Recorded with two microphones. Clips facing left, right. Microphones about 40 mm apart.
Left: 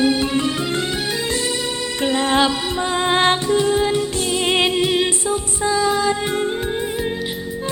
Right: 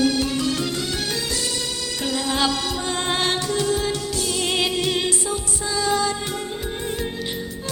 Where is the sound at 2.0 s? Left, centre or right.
Left.